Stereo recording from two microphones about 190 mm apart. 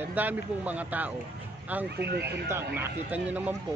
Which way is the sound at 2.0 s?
60° right (ahead or behind).